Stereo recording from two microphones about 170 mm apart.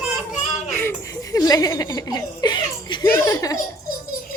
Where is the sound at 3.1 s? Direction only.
20° left (ahead or behind).